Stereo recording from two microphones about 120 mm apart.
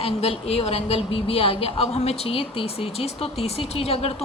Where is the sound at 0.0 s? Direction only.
55° left (ahead or behind).